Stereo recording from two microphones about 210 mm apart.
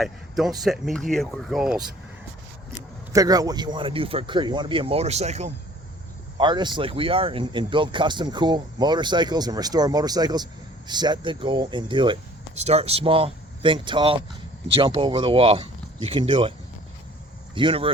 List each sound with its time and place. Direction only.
0.0 s a sound: centre (ahead or behind)
0.6 s speech: centre (ahead or behind)
3.1 s speech: 15° right (ahead or behind)
6.3 s speech: 20° right (ahead or behind)